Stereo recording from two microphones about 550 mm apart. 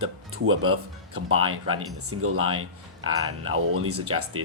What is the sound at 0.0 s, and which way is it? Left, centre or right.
Speech, right.